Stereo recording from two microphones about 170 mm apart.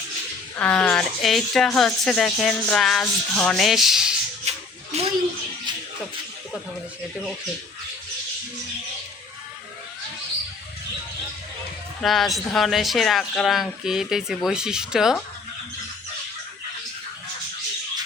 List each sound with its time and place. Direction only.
0.5 s speech: 10° left (ahead or behind)
4.4 s a sound: 40° right (ahead or behind)
12.0 s speech: centre (ahead or behind)